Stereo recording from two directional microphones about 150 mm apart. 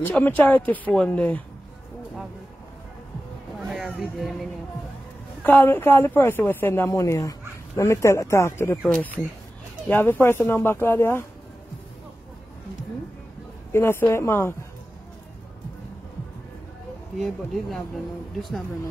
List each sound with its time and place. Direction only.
0.0 s a woman's voice: 10° left (ahead or behind)
3.5 s a sound: centre (ahead or behind)
5.4 s a woman's voice: 10° left (ahead or behind)
13.7 s a woman's voice: 15° left (ahead or behind)
17.2 s speech: centre (ahead or behind)